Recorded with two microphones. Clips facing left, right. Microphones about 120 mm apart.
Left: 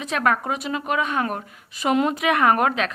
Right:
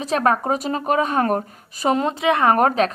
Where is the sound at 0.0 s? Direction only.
35° right (ahead or behind).